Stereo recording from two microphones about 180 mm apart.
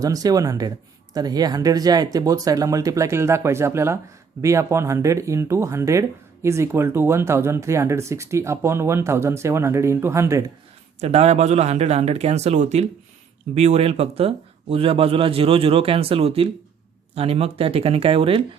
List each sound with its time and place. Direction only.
0.0 s speech: 20° right (ahead or behind)
11.0 s speech: 35° right (ahead or behind)